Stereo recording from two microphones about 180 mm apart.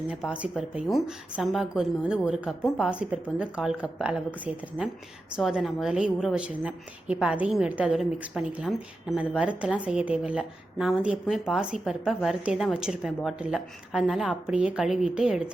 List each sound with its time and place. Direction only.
0.1 s a woman's voice: 5° right (ahead or behind)